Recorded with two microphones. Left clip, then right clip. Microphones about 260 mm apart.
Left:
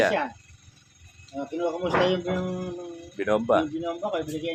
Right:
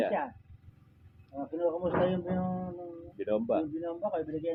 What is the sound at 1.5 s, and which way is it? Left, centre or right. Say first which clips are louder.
Speech: left 3 dB; centre.